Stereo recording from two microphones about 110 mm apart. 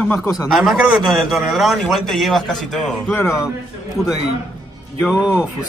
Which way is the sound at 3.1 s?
25° left (ahead or behind).